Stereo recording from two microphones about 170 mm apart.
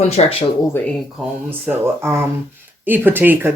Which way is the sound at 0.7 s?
15° left (ahead or behind).